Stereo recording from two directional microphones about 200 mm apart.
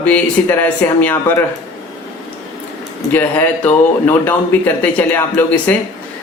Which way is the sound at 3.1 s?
10° left (ahead or behind).